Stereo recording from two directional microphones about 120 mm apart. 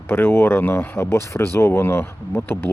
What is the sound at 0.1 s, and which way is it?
Speech, 20° left (ahead or behind).